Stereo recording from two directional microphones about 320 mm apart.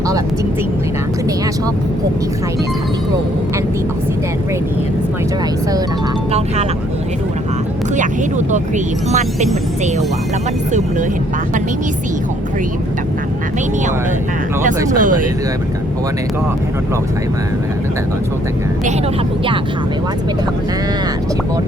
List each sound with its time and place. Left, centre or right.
14.9 s speech: right